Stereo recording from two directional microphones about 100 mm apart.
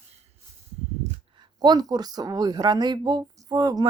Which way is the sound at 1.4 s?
45° right (ahead or behind).